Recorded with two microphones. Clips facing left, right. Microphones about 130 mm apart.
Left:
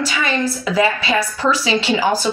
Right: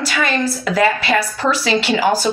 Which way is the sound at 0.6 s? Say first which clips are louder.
Right 2 dB; 55° right (ahead or behind).